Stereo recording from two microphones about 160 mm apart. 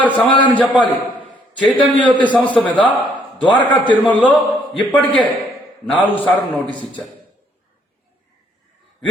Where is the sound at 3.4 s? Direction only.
30° left (ahead or behind).